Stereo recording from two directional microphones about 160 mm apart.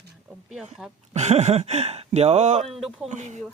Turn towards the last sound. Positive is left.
turn(degrees=-50)  # may be behind; listen again after turning